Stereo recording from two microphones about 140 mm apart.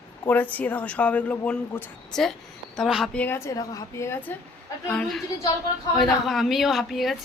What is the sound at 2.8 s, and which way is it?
Female singing, centre (ahead or behind).